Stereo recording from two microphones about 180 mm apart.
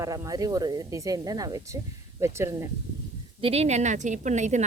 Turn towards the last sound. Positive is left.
turn(degrees=-40)  # may be behind; listen again after turning